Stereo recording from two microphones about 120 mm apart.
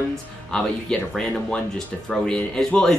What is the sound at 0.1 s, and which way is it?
Speech, 5° left (ahead or behind).